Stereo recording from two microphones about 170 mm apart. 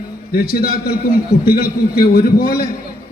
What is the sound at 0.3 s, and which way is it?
A man's voice, 60° left (ahead or behind).